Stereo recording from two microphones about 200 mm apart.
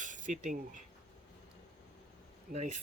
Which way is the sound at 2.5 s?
35° right (ahead or behind).